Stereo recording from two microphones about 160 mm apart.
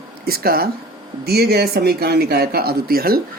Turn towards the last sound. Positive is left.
turn(degrees=-70)  # may be behind; listen again after turning